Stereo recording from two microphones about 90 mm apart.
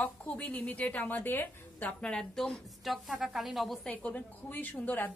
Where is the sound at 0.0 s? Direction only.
15° left (ahead or behind); by 3.9 s centre (ahead or behind).